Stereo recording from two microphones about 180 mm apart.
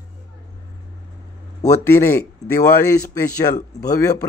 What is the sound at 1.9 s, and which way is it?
Speech, 15° left (ahead or behind).